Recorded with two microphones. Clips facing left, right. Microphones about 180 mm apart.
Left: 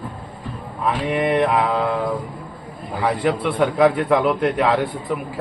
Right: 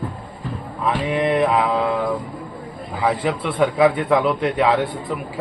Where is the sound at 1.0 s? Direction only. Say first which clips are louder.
Even; centre (ahead or behind).